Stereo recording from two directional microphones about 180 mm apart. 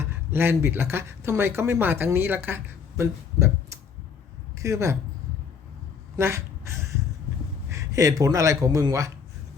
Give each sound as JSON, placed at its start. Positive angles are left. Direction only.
{"t": 0.0, "sound": "speech", "side_deg": -15}
{"t": 6.1, "sound": "a sound", "side_deg": -15}
{"t": 7.7, "sound": "speech", "side_deg": -20}